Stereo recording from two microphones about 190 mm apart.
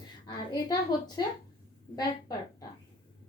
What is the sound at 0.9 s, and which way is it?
Speech, 20° left (ahead or behind).